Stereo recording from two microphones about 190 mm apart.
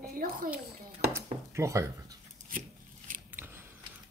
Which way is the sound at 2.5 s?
45° right (ahead or behind).